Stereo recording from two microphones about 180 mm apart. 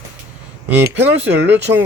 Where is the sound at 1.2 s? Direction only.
75° right (ahead or behind).